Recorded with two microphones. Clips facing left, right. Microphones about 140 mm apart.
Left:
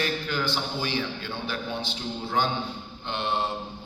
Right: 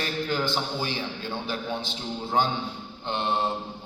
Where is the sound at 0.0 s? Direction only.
35° right (ahead or behind).